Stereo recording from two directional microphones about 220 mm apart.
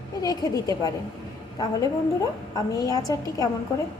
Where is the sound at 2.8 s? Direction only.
15° left (ahead or behind).